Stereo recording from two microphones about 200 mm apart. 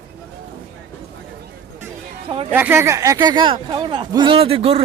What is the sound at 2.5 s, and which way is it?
Speech, 10° right (ahead or behind).